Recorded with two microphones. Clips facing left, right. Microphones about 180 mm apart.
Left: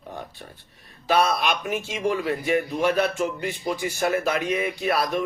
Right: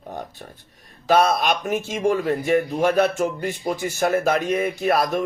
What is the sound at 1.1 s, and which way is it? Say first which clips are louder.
A man's voice: right 3 dB; 45° right (ahead or behind).